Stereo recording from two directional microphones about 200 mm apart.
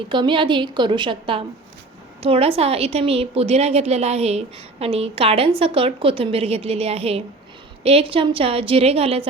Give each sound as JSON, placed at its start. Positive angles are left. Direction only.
{"t": 0.1, "sound": "a woman's voice", "side_deg": -25}